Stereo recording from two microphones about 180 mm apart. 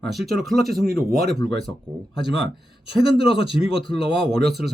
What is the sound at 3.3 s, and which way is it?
A man's voice, 30° left (ahead or behind).